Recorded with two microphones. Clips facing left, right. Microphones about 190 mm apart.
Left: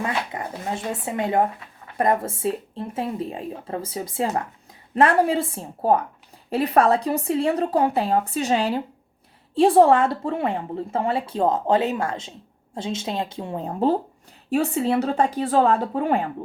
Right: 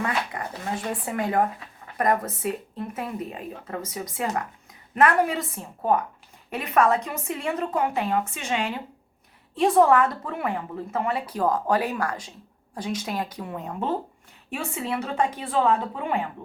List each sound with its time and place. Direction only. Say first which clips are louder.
0.0 s a woman's voice: left 1 dB; 25° left (ahead or behind); by 16.3 s 40° left (ahead or behind)